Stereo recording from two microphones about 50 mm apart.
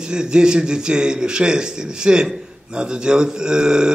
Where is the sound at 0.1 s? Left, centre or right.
Centre.